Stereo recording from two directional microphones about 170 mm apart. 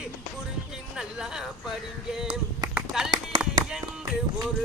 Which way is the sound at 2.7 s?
5° right (ahead or behind).